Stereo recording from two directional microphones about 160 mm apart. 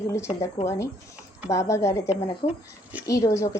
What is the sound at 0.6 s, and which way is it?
Speech, 30° left (ahead or behind).